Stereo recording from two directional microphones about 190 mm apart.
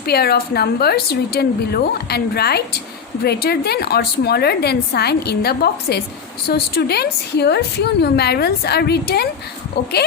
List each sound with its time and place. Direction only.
0.0 s a woman's voice: 55° left (ahead or behind)